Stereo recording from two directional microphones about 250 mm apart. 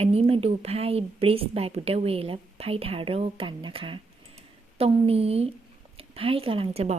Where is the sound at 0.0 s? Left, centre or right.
Right.